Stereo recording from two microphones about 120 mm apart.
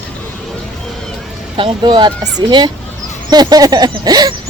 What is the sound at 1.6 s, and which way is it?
Speech, 40° right (ahead or behind).